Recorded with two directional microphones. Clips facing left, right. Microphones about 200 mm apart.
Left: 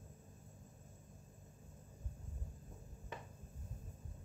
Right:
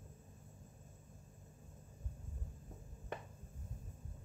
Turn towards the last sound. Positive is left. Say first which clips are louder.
# right 4 dB
turn(degrees=-50)  # may be behind; listen again after turning